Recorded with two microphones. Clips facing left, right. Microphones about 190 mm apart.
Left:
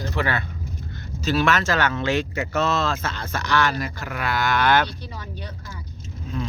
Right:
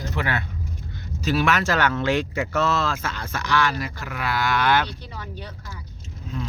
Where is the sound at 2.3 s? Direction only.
Centre (ahead or behind).